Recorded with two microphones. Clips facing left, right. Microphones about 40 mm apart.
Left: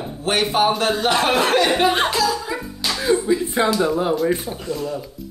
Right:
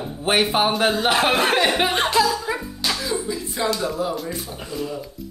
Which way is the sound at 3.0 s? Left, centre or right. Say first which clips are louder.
Left 7 dB; left.